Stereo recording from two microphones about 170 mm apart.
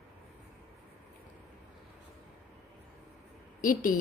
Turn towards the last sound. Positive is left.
turn(degrees=50)  # may be behind; listen again after turning